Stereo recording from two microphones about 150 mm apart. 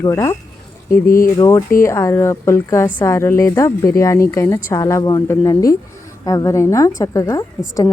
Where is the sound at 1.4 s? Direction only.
20° left (ahead or behind).